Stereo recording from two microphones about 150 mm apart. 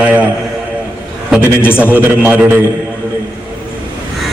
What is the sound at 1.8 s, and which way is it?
Speech, 10° right (ahead or behind).